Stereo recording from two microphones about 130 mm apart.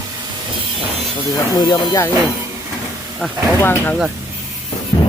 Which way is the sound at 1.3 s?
30° left (ahead or behind).